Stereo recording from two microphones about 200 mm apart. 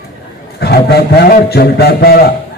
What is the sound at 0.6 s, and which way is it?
A man's voice, 50° left (ahead or behind).